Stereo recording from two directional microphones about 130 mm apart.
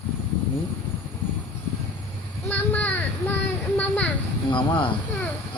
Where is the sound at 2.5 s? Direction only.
15° left (ahead or behind).